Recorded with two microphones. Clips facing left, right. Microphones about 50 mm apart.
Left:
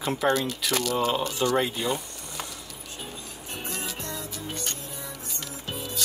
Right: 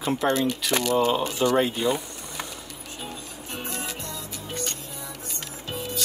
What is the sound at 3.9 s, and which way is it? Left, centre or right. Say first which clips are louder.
Music: left 1 dB; left.